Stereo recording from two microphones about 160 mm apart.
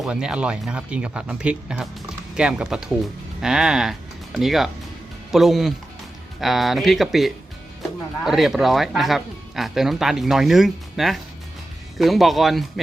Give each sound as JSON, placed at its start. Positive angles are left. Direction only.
{"t": 0.0, "sound": "speech", "side_deg": -5}